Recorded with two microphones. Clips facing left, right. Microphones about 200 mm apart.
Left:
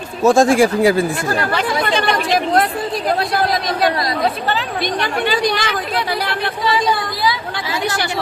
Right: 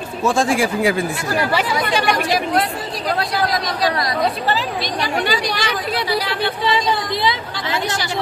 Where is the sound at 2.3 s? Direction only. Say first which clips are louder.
Left 3 dB; 55° left (ahead or behind).